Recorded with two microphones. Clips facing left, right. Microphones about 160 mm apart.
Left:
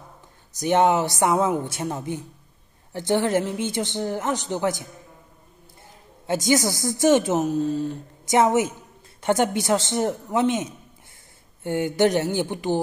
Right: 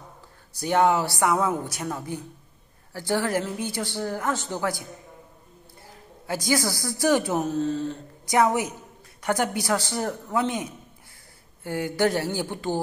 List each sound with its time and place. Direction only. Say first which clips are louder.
0.6 s speech: left 2 dB; 20° left (ahead or behind)
5.9 s a man's voice: left 5 dB; 20° left (ahead or behind)
8.4 s speech: left 3 dB; 25° left (ahead or behind)